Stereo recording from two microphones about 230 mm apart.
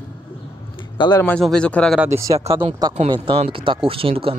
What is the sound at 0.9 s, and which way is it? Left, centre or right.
Speech, centre.